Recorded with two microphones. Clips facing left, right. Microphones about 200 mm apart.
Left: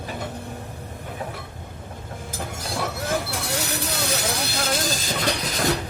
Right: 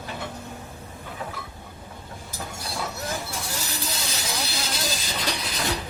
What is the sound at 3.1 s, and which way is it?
Vehicle, 70° left (ahead or behind).